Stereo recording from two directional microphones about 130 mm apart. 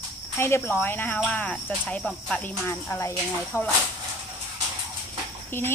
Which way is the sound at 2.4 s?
20° left (ahead or behind).